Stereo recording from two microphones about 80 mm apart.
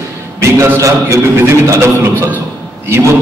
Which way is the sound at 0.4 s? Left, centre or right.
Right.